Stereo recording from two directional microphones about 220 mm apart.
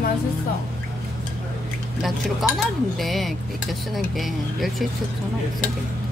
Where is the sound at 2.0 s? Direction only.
Centre (ahead or behind).